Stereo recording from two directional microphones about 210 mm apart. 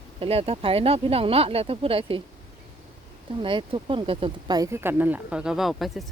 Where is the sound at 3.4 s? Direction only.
25° right (ahead or behind).